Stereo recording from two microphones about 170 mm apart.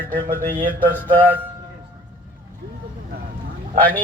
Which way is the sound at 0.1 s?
55° right (ahead or behind).